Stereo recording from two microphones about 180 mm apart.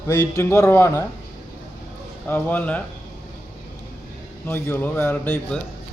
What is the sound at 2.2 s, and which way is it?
Speech, 10° left (ahead or behind).